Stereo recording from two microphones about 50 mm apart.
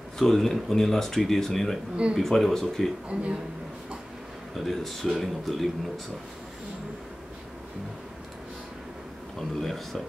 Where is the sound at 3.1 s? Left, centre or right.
Centre.